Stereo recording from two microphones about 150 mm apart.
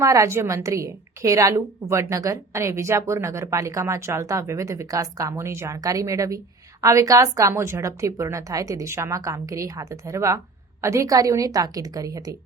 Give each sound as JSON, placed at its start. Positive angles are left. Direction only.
{"t": 0.0, "sound": "a woman's voice", "side_deg": -20}